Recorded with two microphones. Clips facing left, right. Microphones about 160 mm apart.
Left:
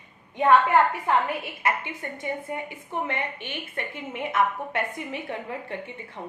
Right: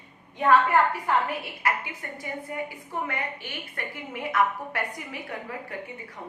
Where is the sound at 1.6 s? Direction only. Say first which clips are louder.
Left 2 dB; 25° left (ahead or behind).